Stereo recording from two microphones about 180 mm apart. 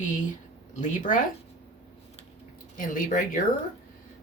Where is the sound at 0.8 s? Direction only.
45° left (ahead or behind).